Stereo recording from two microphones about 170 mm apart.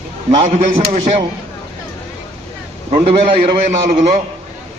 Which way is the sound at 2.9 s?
35° right (ahead or behind).